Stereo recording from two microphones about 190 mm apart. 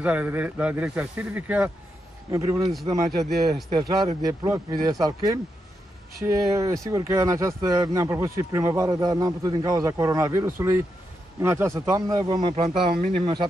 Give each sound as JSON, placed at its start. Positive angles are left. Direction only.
{"t": 0.0, "sound": "a man's voice", "side_deg": -10}